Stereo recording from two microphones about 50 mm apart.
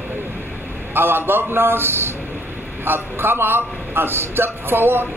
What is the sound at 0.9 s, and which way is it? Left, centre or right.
A man's voice, right.